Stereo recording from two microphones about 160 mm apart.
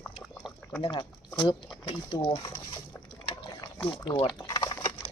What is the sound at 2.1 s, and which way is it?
Liquid, 30° left (ahead or behind).